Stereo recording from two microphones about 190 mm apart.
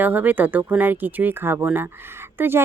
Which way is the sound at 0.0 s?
10° right (ahead or behind).